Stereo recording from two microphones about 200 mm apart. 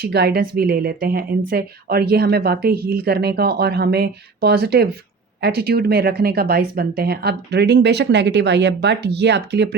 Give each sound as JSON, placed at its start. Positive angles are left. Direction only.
{"t": 0.0, "sound": "a woman's voice", "side_deg": -55}